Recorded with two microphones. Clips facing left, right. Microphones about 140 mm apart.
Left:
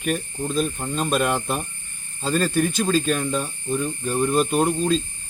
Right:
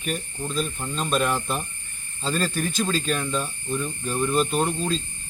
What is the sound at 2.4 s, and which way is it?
Speech, 50° left (ahead or behind).